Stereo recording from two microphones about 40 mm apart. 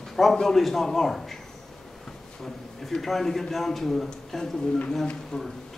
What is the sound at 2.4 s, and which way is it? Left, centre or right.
A man's voice, centre.